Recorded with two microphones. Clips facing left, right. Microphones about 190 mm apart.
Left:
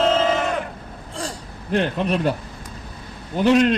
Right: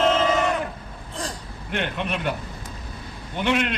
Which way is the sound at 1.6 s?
35° left (ahead or behind).